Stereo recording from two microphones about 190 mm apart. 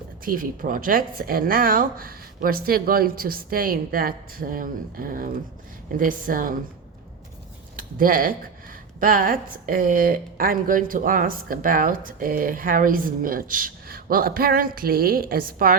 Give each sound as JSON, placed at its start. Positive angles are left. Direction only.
{"t": 0.3, "sound": "speech", "side_deg": -45}
{"t": 7.8, "sound": "speech", "side_deg": -50}